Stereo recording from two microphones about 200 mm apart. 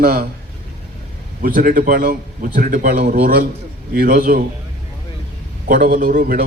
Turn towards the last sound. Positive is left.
turn(degrees=-45)  # may be behind; listen again after turning